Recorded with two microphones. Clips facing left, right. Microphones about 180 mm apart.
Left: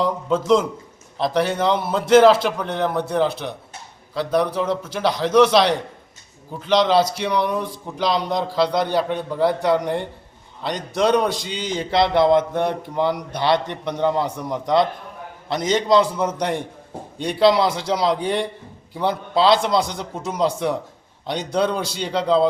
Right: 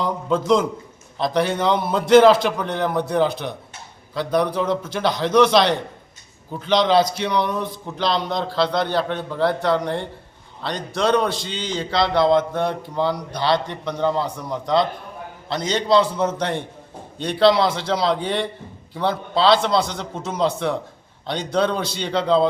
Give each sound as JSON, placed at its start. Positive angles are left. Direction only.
{"t": 0.0, "sound": "a man's voice", "side_deg": 5}